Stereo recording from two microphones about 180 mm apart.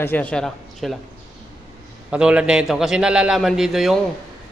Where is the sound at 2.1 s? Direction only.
5° right (ahead or behind).